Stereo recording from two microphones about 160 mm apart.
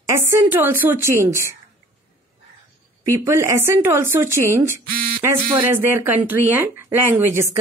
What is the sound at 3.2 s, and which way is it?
Speech, 15° right (ahead or behind).